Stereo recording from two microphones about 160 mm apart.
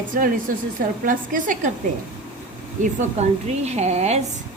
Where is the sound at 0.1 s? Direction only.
60° right (ahead or behind).